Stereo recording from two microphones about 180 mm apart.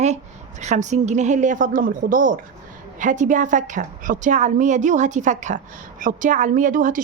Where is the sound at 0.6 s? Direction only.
40° right (ahead or behind).